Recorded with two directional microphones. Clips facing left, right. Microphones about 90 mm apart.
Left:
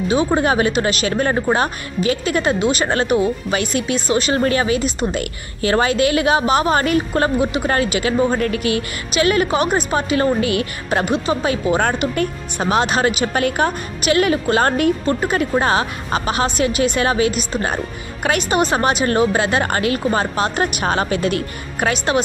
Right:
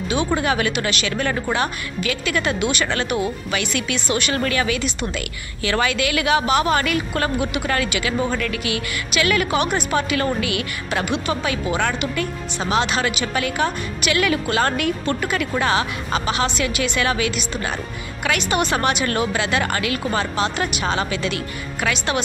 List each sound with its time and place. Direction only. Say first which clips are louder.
0.1 s a woman's voice: left 4 dB; 35° left (ahead or behind)